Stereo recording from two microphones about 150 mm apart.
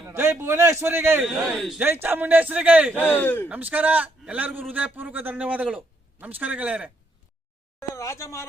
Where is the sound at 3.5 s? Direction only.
10° right (ahead or behind).